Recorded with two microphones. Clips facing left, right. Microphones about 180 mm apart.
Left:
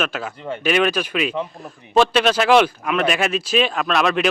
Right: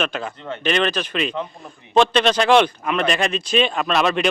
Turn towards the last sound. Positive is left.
turn(degrees=0)  # may be behind; listen again after turning